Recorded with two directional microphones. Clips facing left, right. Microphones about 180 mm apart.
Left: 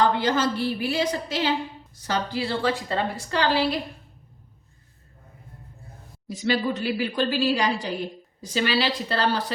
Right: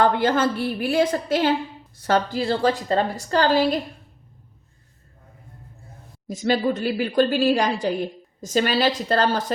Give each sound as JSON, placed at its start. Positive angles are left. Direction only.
{"t": 0.0, "sound": "a woman's voice", "side_deg": -55}
{"t": 6.2, "sound": "a woman's voice", "side_deg": -45}